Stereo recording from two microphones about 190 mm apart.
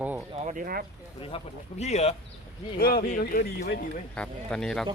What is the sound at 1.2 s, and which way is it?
Speech, 30° left (ahead or behind).